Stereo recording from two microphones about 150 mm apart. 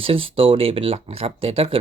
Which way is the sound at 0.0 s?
35° right (ahead or behind).